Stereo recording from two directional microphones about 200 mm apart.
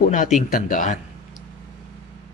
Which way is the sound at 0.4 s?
40° left (ahead or behind).